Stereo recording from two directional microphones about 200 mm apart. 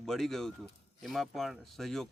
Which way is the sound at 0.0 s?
Centre (ahead or behind).